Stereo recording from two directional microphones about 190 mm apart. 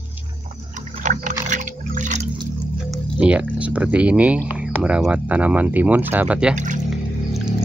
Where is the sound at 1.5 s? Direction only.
40° right (ahead or behind).